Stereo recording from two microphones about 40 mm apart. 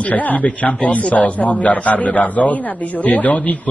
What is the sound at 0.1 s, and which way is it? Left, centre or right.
A man's voice, left.